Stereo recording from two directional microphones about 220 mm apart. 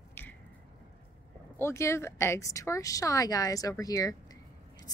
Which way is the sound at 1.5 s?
10° left (ahead or behind).